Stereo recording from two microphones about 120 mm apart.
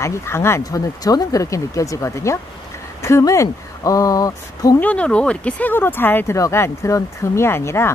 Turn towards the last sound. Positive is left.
turn(degrees=20)  # may be behind; listen again after turning